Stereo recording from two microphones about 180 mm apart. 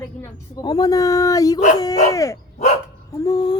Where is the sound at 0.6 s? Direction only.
20° left (ahead or behind).